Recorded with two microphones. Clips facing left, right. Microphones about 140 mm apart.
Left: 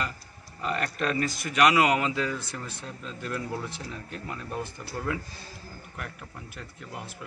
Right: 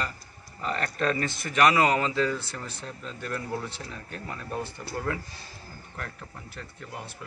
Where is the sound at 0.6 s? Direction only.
10° left (ahead or behind).